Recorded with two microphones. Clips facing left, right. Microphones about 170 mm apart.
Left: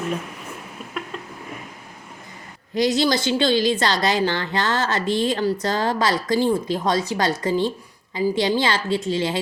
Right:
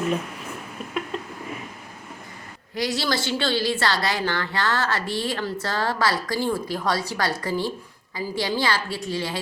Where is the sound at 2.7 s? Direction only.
20° left (ahead or behind).